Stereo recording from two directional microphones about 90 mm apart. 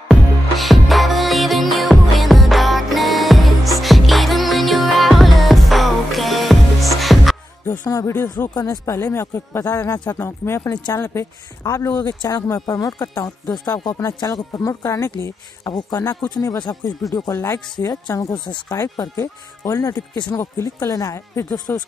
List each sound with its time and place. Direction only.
0.1 s music: centre (ahead or behind)
7.6 s music: 20° left (ahead or behind)
8.1 s speech: 25° left (ahead or behind)
12.1 s speech: 45° left (ahead or behind)
15.6 s speech: 50° left (ahead or behind)
17.3 s speech: 30° left (ahead or behind)
18.3 s speech: 60° left (ahead or behind)
18.7 s speech: 45° left (ahead or behind)
20.3 s speech: 30° left (ahead or behind)